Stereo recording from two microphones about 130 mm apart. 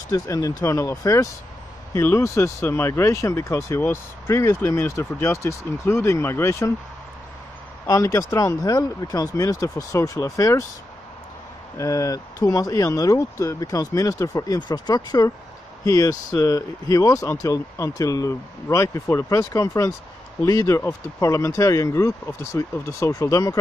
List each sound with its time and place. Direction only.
0.1 s speech: 25° left (ahead or behind)
7.8 s speech: 25° left (ahead or behind)
11.7 s speech: 25° left (ahead or behind)